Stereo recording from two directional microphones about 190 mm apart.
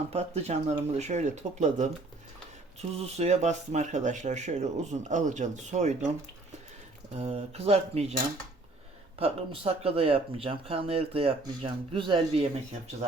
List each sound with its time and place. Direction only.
0.1 s speech: 35° right (ahead or behind)
3.0 s speech: 35° right (ahead or behind)
7.2 s speech: 35° right (ahead or behind)